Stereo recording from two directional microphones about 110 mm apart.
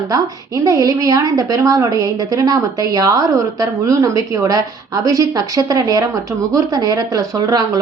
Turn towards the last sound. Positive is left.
turn(degrees=-35)  # may be behind; listen again after turning